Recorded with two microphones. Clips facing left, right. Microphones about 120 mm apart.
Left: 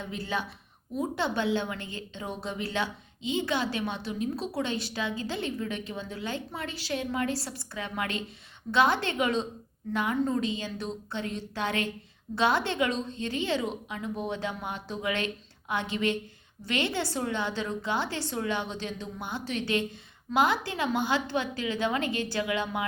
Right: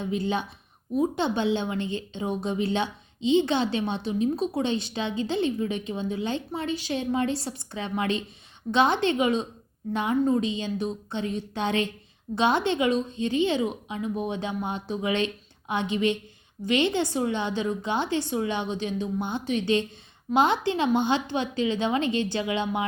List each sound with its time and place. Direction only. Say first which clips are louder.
0.0 s a woman's voice: right 6 dB; 20° right (ahead or behind)